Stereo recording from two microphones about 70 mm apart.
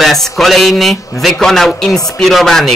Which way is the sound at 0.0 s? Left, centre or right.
Centre.